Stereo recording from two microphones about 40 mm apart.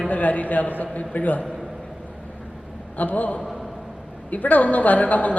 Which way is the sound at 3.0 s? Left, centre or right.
Left.